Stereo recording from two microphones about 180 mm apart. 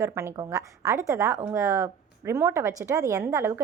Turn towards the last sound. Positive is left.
turn(degrees=-15)  # may be behind; listen again after turning